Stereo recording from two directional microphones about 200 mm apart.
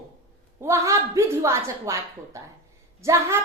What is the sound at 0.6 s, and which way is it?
A woman's voice, 15° right (ahead or behind).